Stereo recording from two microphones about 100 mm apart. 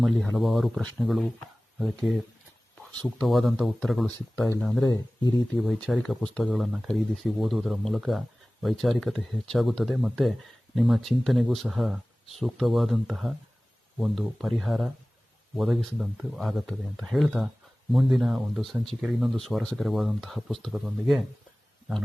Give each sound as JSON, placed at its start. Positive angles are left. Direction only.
{"t": 0.3, "sound": "speech", "side_deg": 0}
{"t": 3.2, "sound": "speech", "side_deg": 0}
{"t": 4.9, "sound": "speech", "side_deg": 40}
{"t": 5.5, "sound": "speech", "side_deg": 0}